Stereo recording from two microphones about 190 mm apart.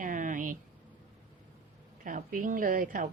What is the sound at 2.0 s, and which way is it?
A woman's voice, 50° right (ahead or behind).